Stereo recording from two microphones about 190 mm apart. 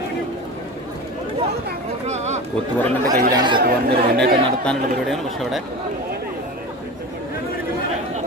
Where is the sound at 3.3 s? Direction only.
25° right (ahead or behind).